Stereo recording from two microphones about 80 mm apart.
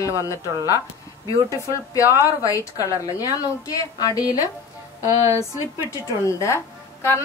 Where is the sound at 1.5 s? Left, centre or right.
Left.